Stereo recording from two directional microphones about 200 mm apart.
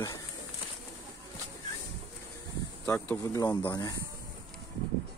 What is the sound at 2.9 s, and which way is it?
Speech, 15° left (ahead or behind).